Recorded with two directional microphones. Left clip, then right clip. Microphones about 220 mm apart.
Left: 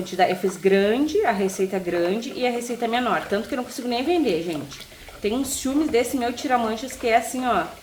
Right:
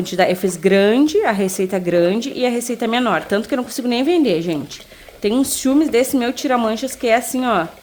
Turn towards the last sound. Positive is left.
turn(degrees=-50)  # may be behind; listen again after turning